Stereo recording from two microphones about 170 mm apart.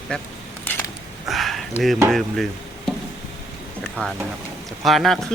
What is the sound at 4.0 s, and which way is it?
Speech, 5° left (ahead or behind).